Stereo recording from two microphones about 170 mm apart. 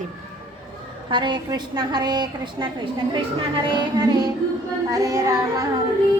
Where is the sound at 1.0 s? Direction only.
25° right (ahead or behind).